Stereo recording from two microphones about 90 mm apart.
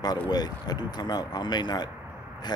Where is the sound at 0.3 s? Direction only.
50° left (ahead or behind).